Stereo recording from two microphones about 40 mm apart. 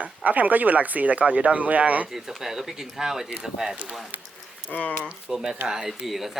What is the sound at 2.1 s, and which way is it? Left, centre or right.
Speech, centre.